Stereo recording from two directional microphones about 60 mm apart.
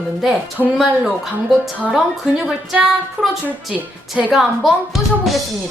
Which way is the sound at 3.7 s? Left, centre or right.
Right.